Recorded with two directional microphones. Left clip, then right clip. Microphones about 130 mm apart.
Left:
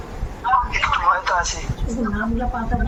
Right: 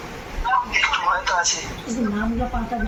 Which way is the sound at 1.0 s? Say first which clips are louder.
Left 2 dB; 25° left (ahead or behind).